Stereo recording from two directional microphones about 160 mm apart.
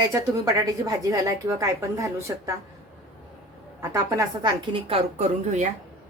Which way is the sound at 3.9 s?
25° right (ahead or behind).